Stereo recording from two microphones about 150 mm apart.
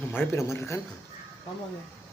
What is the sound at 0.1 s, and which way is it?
Speech, 15° left (ahead or behind).